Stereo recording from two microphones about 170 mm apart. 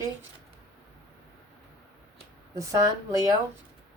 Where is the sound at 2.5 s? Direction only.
20° right (ahead or behind).